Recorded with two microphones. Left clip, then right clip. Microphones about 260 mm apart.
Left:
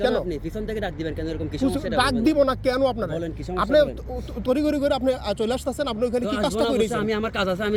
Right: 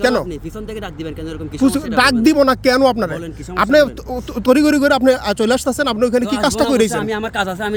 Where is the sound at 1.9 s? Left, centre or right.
Right.